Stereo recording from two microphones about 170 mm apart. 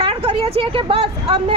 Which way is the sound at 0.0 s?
30° right (ahead or behind).